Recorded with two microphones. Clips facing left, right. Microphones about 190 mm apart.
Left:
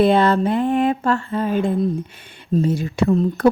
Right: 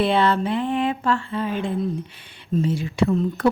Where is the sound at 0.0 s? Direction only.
45° left (ahead or behind).